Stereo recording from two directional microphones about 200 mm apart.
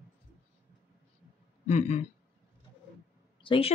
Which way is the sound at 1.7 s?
35° left (ahead or behind).